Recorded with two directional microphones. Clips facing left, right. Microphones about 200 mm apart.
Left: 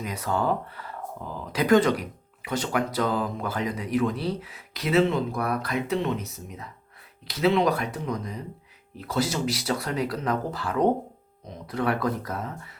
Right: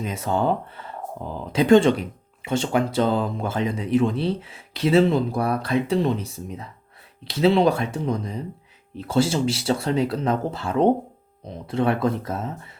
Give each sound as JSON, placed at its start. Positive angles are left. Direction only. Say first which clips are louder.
{"t": 0.0, "sound": "speech", "louder": "right 4 dB", "side_deg": -25}